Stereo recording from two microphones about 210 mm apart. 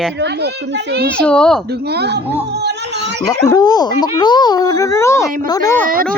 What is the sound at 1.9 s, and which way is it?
A child's voice, 50° right (ahead or behind).